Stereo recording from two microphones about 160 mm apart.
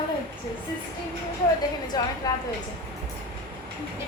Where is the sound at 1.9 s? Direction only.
25° left (ahead or behind).